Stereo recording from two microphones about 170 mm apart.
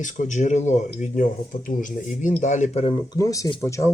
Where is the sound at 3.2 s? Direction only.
20° left (ahead or behind).